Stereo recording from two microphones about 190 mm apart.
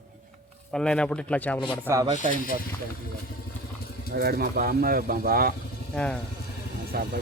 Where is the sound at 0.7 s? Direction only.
5° left (ahead or behind).